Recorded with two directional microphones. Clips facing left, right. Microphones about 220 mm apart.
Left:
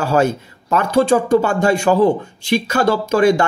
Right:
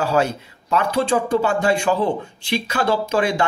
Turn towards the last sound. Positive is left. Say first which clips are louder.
# left 6 dB
turn(degrees=45)  # may be behind; listen again after turning